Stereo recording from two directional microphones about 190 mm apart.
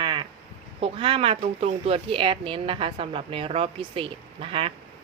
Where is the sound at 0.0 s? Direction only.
25° right (ahead or behind).